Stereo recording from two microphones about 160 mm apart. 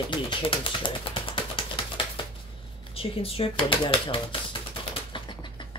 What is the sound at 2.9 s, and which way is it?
Speech, 35° left (ahead or behind).